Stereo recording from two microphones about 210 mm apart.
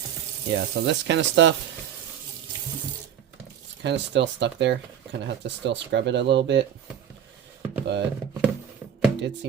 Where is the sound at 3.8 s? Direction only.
55° right (ahead or behind).